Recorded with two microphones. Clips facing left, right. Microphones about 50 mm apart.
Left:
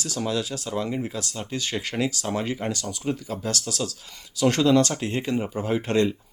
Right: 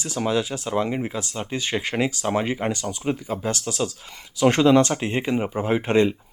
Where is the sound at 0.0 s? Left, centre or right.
Right.